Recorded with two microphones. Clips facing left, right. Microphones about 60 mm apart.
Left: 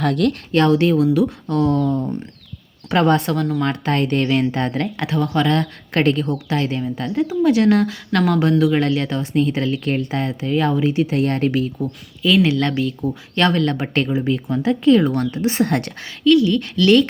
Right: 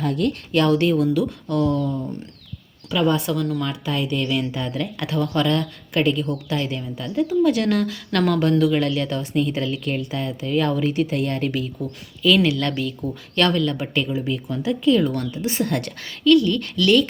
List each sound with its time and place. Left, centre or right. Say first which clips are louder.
0.0 s a woman's voice: left 4 dB; left
0.7 s speech: left 3 dB; left
2.9 s a woman's voice: left 4 dB; left
3.2 s a woman's voice: left 3 dB; left; by 8.8 s centre
8.8 s a woman's voice: left 3 dB; left
12.2 s speech: left 2 dB; left
12.7 s speech: left 5 dB; centre
13.3 s a woman's voice: left 2 dB; left